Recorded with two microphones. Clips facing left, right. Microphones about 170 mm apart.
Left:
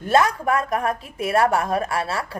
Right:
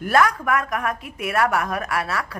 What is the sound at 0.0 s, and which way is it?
A woman's voice, 25° left (ahead or behind).